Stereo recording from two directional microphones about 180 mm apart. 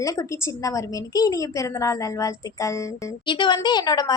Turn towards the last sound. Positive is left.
turn(degrees=20)  # may be behind; listen again after turning